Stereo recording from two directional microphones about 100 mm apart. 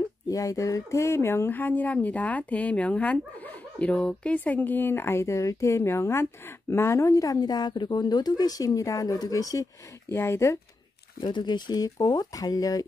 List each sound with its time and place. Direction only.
0.3 s speech: 35° left (ahead or behind)
11.1 s speech: 50° left (ahead or behind)